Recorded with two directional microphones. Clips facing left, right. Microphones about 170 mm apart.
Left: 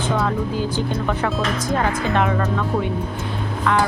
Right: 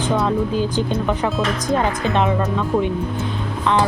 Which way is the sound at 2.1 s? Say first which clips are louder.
Right 2 dB; 20° right (ahead or behind).